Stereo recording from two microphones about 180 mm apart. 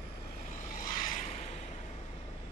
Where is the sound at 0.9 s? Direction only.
45° left (ahead or behind).